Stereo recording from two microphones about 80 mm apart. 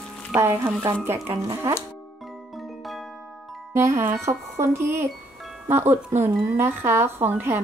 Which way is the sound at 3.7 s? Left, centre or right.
Right.